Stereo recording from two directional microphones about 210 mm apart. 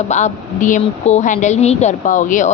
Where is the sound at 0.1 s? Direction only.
35° left (ahead or behind).